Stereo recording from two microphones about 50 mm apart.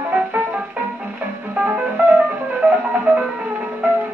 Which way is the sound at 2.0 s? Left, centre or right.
Right.